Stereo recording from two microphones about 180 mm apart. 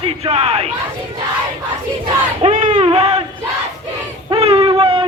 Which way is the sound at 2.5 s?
45° right (ahead or behind).